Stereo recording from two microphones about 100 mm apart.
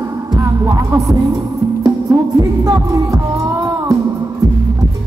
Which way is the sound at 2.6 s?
35° right (ahead or behind).